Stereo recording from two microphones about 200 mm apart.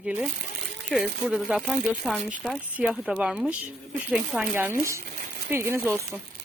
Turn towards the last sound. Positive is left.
turn(degrees=-10)  # may be behind; listen again after turning